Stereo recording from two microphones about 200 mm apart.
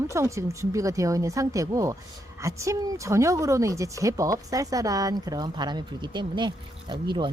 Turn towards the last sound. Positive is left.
turn(degrees=-25)  # may be behind; listen again after turning